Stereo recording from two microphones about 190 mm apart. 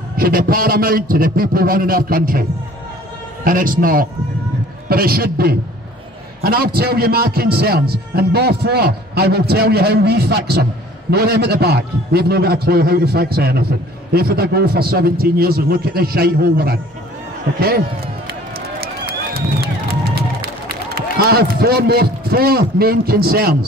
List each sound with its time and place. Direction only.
0.2 s a man's voice: 50° right (ahead or behind)
3.4 s a man's voice: 45° right (ahead or behind)
18.8 s a sound: 50° right (ahead or behind)
20.2 s a man's voice: 55° right (ahead or behind)